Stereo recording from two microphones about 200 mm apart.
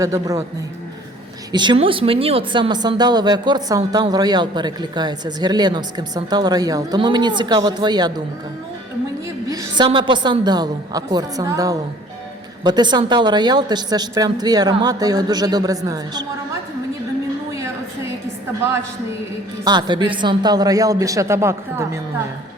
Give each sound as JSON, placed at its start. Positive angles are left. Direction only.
{"t": 0.0, "sound": "speech", "side_deg": -15}
{"t": 1.5, "sound": "speech", "side_deg": -25}
{"t": 9.2, "sound": "a woman's voice", "side_deg": -15}
{"t": 17.5, "sound": "a sound", "side_deg": -15}
{"t": 19.6, "sound": "speech", "side_deg": -20}